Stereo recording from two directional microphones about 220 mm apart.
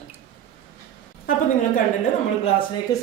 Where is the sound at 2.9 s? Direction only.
15° left (ahead or behind).